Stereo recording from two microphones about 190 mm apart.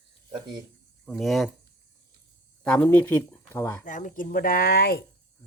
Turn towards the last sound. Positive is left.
turn(degrees=55)  # may be behind; listen again after turning